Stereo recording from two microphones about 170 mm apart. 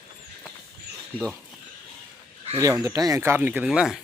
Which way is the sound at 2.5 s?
15° right (ahead or behind).